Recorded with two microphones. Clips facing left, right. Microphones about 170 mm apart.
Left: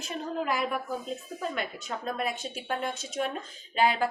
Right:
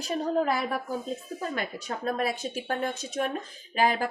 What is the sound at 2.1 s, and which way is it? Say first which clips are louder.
A woman's voice: right 3 dB; 40° right (ahead or behind).